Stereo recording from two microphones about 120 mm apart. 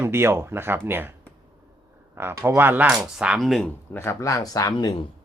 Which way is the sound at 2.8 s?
5° right (ahead or behind).